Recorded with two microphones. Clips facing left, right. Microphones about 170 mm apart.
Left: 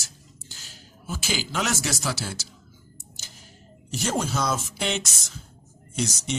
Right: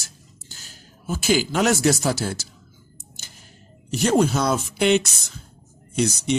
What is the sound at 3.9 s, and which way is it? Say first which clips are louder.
Speech: right 8 dB; 60° right (ahead or behind).